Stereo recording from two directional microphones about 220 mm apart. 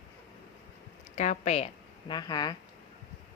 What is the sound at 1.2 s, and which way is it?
A woman's voice, 30° left (ahead or behind).